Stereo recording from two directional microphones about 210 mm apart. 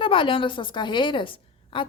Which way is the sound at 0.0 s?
25° left (ahead or behind).